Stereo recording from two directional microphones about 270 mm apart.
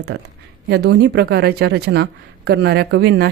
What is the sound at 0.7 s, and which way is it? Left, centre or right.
A woman's voice, right.